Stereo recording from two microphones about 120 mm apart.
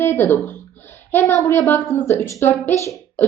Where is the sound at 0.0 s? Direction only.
20° left (ahead or behind).